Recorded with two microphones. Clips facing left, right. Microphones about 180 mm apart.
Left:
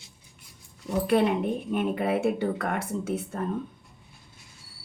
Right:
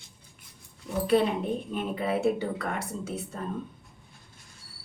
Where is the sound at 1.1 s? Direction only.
60° left (ahead or behind).